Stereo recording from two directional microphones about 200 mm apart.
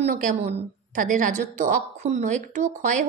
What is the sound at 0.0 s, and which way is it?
A woman's voice, 40° right (ahead or behind).